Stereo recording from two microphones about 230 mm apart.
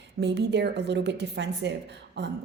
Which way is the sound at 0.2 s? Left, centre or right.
Right.